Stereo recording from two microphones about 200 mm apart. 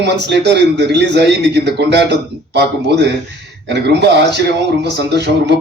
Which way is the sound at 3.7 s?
55° right (ahead or behind).